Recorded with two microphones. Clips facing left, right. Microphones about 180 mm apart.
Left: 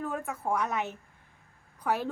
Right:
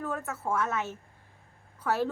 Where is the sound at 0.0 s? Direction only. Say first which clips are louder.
Even; 15° left (ahead or behind).